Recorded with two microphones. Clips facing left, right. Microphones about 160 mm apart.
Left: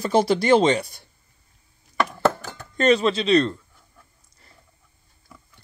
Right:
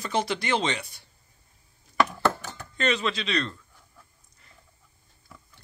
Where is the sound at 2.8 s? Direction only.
40° left (ahead or behind).